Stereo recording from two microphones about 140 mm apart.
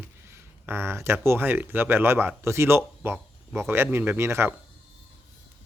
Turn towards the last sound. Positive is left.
turn(degrees=-20)  # may be behind; listen again after turning